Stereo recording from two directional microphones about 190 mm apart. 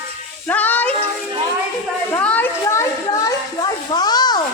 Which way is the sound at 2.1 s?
10° left (ahead or behind).